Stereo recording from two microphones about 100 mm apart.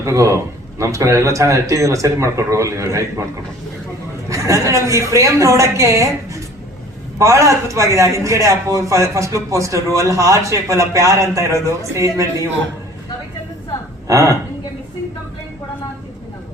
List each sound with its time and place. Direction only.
0.0 s a man's voice: 30° right (ahead or behind)
4.3 s a woman's voice: 30° right (ahead or behind)
7.2 s a man's voice: 30° right (ahead or behind)
14.1 s a woman's voice: 30° right (ahead or behind)